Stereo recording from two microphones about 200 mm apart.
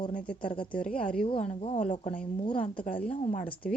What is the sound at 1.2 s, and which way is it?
A woman's voice, 30° left (ahead or behind).